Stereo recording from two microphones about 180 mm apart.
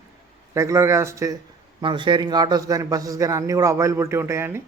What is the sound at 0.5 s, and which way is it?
A man's voice, 15° right (ahead or behind).